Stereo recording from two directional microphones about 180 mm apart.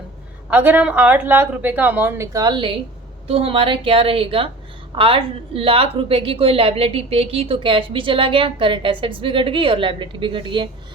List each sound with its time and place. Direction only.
0.5 s a woman's voice: 10° right (ahead or behind); by 10.7 s 25° right (ahead or behind)